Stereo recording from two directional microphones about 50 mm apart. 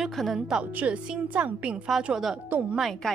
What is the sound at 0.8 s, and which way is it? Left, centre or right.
A woman's voice, right.